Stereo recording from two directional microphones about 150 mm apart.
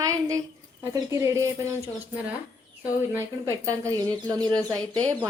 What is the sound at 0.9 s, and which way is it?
Speech, 20° right (ahead or behind).